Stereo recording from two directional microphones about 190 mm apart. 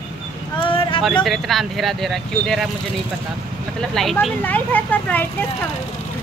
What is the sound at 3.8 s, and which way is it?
Speech, centre (ahead or behind).